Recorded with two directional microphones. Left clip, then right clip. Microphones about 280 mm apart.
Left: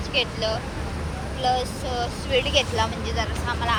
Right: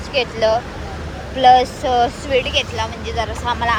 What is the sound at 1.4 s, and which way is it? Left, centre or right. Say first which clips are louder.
Speech: right 13 dB; right.